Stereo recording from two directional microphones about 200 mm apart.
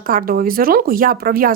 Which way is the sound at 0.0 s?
45° right (ahead or behind).